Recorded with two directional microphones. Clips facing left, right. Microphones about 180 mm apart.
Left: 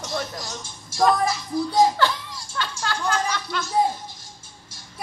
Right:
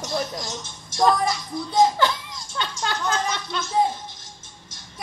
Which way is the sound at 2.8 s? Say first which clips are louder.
Even; 25° right (ahead or behind).